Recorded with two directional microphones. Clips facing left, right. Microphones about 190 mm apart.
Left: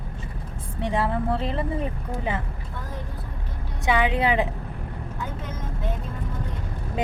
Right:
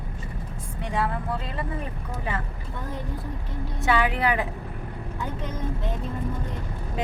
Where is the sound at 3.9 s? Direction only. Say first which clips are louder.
Left 1 dB; 20° left (ahead or behind).